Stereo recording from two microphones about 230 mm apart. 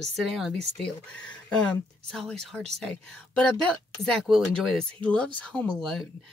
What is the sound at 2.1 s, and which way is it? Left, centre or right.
Speech, centre.